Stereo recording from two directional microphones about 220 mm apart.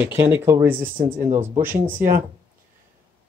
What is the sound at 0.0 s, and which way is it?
Speech, 10° right (ahead or behind).